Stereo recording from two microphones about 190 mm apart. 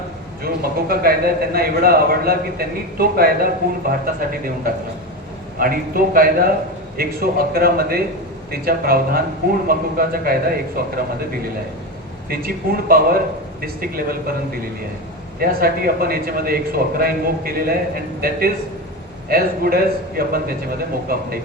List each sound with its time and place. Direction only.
0.4 s a man's voice: 50° right (ahead or behind)
12.3 s a man's voice: 50° right (ahead or behind)
15.4 s a man's voice: 50° right (ahead or behind)